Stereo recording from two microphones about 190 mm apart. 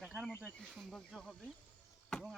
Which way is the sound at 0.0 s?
5° right (ahead or behind).